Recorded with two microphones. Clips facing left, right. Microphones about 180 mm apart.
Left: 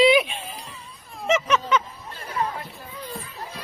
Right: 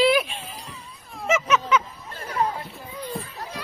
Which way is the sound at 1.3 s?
5° right (ahead or behind).